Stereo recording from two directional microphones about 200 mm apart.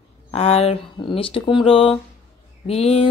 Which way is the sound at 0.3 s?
30° left (ahead or behind).